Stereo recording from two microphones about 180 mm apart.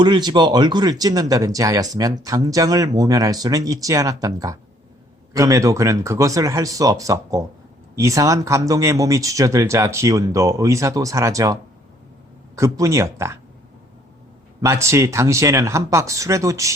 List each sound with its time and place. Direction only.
0.0 s speech: 25° right (ahead or behind)
12.5 s speech: 20° right (ahead or behind)
14.6 s speech: 15° right (ahead or behind)